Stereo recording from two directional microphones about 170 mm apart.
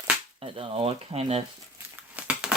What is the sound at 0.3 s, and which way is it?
Speech, 35° right (ahead or behind).